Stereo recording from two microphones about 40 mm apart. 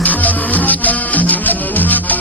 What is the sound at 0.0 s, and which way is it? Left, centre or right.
Music, left.